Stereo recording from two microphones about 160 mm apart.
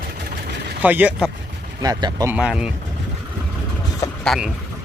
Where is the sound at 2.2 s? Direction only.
5° right (ahead or behind).